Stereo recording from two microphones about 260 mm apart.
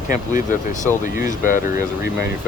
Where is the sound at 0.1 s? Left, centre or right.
Left.